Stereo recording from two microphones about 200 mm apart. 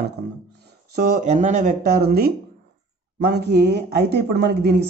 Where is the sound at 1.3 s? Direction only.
35° right (ahead or behind).